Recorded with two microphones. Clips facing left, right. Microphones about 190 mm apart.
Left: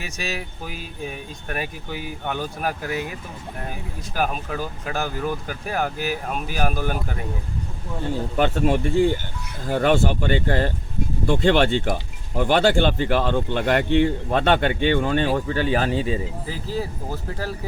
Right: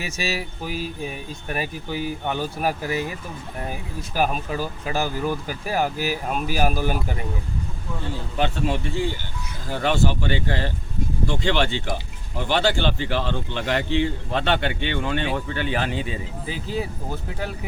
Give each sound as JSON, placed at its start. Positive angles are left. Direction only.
{"t": 0.0, "sound": "speech", "side_deg": -5}
{"t": 8.4, "sound": "speech", "side_deg": 50}